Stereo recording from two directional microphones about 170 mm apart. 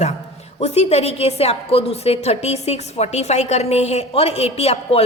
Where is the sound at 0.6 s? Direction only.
40° left (ahead or behind).